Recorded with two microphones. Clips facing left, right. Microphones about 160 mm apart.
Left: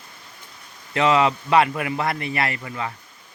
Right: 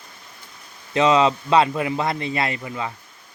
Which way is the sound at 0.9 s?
20° right (ahead or behind).